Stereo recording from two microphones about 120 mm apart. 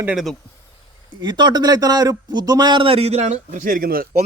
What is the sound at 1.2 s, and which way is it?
A man's voice, 40° right (ahead or behind).